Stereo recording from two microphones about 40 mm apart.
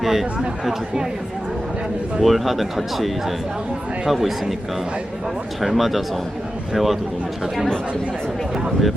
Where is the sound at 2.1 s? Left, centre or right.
Centre.